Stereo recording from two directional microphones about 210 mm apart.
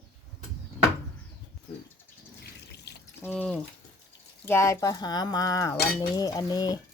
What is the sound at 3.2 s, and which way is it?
Speech, 10° left (ahead or behind).